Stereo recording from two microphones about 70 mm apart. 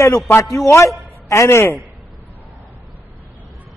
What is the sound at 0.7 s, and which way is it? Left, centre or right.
A man's voice, left.